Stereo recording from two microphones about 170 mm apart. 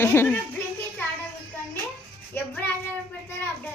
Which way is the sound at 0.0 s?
15° left (ahead or behind).